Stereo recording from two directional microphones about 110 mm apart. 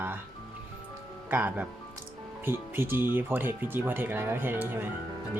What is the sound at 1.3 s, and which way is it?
Speech, 15° right (ahead or behind).